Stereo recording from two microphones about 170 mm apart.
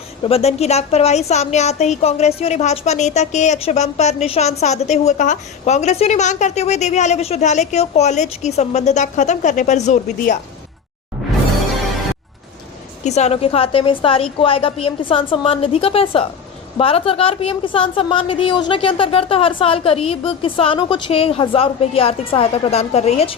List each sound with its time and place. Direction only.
0.3 s a woman's voice: 35° left (ahead or behind)
13.1 s a woman's voice: 40° left (ahead or behind)